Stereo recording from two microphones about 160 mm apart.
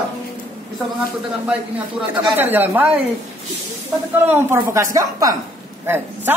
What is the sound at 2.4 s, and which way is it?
Speech, 10° right (ahead or behind).